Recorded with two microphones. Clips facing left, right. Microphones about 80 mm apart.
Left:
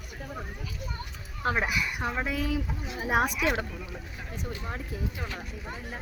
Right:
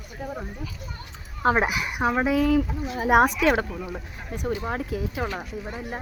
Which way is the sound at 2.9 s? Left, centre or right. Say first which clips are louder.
Right 8 dB; right.